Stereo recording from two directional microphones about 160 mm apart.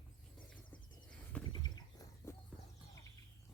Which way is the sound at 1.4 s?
25° left (ahead or behind).